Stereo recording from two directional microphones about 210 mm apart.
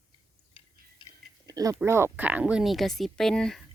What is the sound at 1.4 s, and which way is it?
Speech, 15° right (ahead or behind).